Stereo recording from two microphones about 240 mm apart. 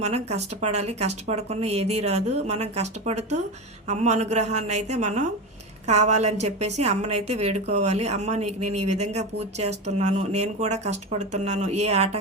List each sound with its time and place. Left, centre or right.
0.0 s a woman's voice: right